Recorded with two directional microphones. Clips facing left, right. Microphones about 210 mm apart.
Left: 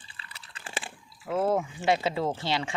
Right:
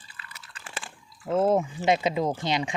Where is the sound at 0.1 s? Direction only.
30° left (ahead or behind).